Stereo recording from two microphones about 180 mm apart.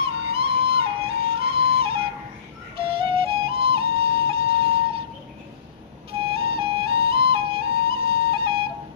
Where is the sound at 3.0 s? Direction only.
30° right (ahead or behind).